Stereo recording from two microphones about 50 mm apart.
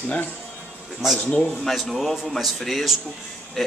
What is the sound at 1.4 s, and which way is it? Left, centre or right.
Speech, centre.